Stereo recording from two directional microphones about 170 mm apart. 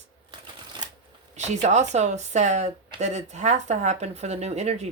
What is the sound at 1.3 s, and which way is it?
Speech, 40° right (ahead or behind).